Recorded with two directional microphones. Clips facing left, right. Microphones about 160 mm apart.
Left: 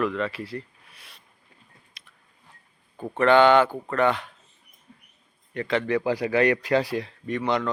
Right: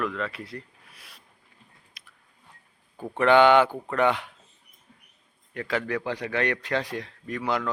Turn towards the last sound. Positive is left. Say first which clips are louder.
# left 3 dB
turn(degrees=-5)  # may be behind; listen again after turning